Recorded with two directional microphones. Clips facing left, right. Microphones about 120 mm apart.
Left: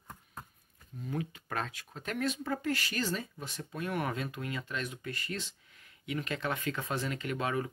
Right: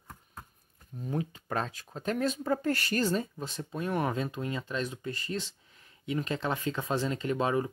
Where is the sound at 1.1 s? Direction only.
30° right (ahead or behind).